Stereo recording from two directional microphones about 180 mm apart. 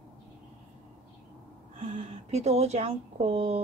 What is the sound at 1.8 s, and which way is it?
A woman's voice, 35° right (ahead or behind).